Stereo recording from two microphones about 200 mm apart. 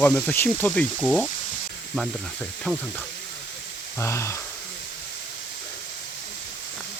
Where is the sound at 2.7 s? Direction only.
Centre (ahead or behind).